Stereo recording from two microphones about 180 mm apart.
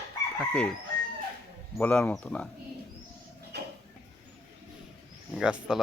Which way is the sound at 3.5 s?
65° right (ahead or behind).